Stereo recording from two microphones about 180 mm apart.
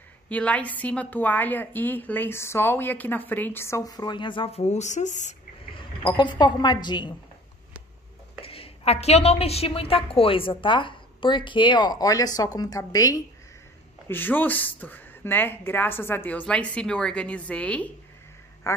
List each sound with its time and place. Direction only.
0.3 s a woman's voice: 5° left (ahead or behind); by 5.3 s 40° left (ahead or behind)
5.8 s a woman's voice: 25° left (ahead or behind)
8.4 s a woman's voice: 30° left (ahead or behind); by 17.8 s 5° left (ahead or behind)
18.6 s a man's voice: 15° left (ahead or behind)